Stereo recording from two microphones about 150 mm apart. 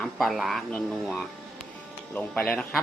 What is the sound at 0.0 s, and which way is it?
Speech, centre (ahead or behind).